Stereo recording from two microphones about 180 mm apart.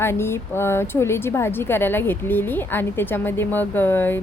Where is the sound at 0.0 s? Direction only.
15° left (ahead or behind).